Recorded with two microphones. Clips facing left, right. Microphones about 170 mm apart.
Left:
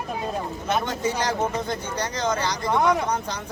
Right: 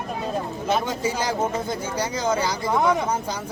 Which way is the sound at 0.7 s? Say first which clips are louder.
Right 1 dB; 5° right (ahead or behind).